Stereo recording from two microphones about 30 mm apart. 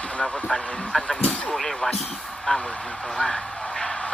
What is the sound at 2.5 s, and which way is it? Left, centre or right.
Speech, left.